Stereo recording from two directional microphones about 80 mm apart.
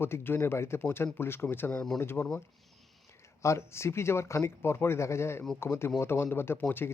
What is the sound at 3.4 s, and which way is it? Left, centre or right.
A man's voice, left.